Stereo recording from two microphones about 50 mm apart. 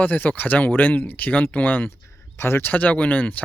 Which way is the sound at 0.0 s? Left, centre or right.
Left.